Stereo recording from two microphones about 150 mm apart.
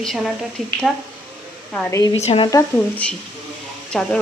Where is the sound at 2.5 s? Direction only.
15° left (ahead or behind).